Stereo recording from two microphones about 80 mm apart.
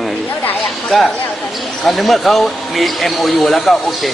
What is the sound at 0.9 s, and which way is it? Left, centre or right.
Speech, centre.